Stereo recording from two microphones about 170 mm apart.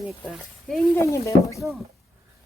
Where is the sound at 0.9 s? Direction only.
15° left (ahead or behind).